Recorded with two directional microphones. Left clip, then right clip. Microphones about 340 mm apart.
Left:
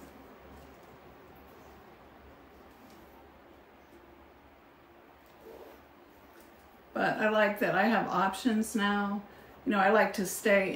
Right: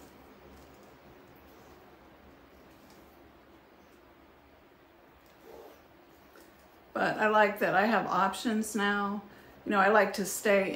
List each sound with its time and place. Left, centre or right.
6.9 s speech: centre